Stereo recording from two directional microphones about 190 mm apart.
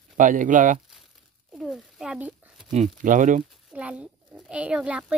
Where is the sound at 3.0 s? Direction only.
45° right (ahead or behind).